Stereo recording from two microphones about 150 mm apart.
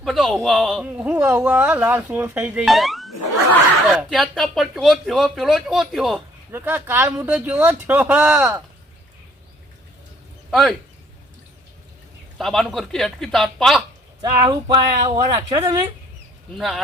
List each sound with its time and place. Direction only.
0.0 s speech: centre (ahead or behind)
0.9 s speech: 10° right (ahead or behind)
2.6 s speech: centre (ahead or behind)
6.5 s speech: 15° right (ahead or behind)
10.5 s speech: centre (ahead or behind)
12.4 s speech: centre (ahead or behind)
14.2 s speech: 25° right (ahead or behind)
16.6 s speech: centre (ahead or behind)